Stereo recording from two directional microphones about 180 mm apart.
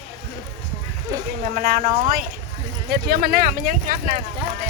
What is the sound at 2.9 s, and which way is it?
Speech, 60° right (ahead or behind).